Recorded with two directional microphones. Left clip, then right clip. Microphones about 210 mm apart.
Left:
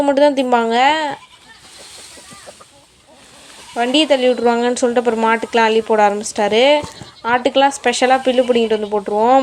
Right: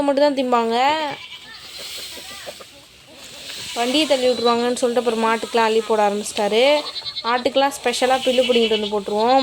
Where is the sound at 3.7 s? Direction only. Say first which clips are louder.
Left 4 dB; 10° left (ahead or behind).